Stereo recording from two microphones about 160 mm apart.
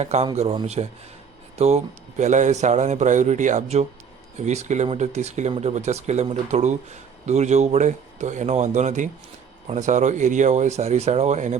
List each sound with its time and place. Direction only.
0.0 s speech: 45° right (ahead or behind)